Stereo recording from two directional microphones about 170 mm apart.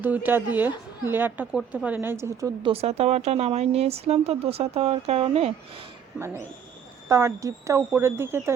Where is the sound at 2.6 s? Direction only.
35° right (ahead or behind).